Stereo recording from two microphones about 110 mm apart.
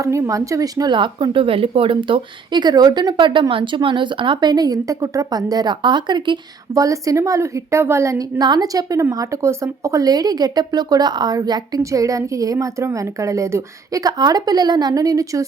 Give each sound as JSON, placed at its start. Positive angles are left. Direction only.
{"t": 0.0, "sound": "speech", "side_deg": -30}
{"t": 6.7, "sound": "a woman's voice", "side_deg": -30}
{"t": 8.4, "sound": "speech", "side_deg": -40}